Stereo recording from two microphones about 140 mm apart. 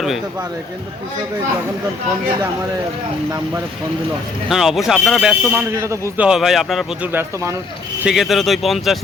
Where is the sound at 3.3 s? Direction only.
20° right (ahead or behind).